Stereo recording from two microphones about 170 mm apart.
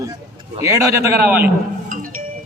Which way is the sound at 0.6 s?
20° right (ahead or behind).